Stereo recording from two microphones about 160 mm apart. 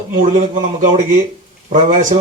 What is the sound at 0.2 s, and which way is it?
A man's voice, 50° right (ahead or behind).